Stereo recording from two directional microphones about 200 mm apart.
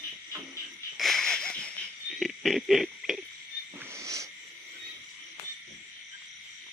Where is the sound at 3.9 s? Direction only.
15° right (ahead or behind).